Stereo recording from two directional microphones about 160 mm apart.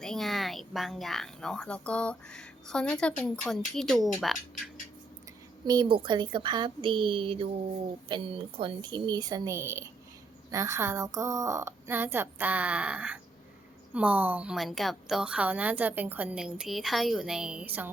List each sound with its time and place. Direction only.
0.0 s speech: centre (ahead or behind)
5.6 s a woman's voice: 25° right (ahead or behind); by 17.9 s 10° right (ahead or behind)